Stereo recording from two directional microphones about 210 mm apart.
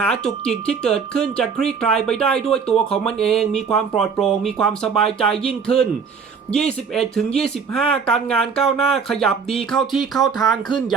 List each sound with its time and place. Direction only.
0.0 s speech: 5° left (ahead or behind)
10.7 s speech: 20° left (ahead or behind)